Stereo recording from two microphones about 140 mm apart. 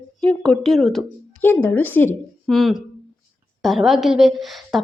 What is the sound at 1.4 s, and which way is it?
Speech, 15° left (ahead or behind).